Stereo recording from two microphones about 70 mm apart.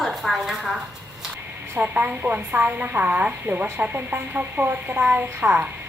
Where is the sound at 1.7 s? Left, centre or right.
Right.